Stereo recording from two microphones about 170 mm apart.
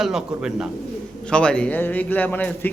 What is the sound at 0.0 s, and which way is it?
A man's voice, 5° right (ahead or behind).